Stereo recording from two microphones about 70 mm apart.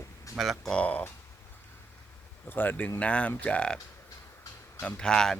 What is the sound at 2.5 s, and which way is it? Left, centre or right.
Speech, left.